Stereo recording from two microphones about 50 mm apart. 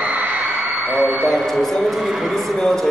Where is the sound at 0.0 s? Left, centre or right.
Right.